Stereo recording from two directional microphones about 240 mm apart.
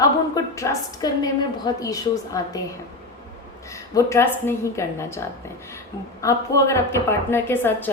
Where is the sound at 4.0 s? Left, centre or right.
Centre.